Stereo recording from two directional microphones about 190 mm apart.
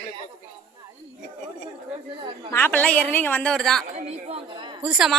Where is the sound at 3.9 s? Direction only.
35° right (ahead or behind).